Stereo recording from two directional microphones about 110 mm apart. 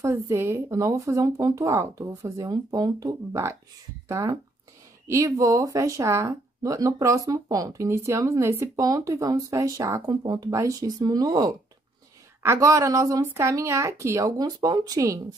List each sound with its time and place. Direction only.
0.0 s a woman's voice: 25° right (ahead or behind)
5.0 s a woman's voice: 30° right (ahead or behind)